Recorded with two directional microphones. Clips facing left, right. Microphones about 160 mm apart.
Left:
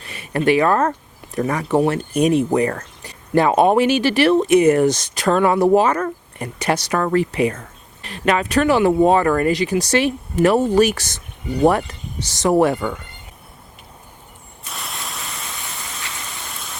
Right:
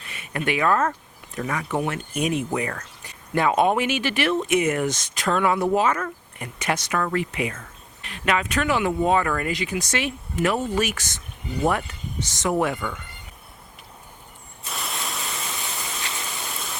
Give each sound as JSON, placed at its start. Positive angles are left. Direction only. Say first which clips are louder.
{"t": 0.0, "sound": "speech", "louder": "left 9 dB", "side_deg": 35}
{"t": 14.6, "sound": "static", "louder": "even", "side_deg": 0}
{"t": 16.3, "sound": "rain", "louder": "right 1 dB", "side_deg": 0}